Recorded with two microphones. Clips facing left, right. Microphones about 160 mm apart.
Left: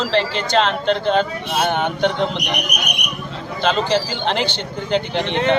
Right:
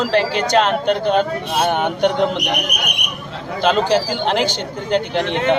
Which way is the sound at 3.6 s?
5° right (ahead or behind).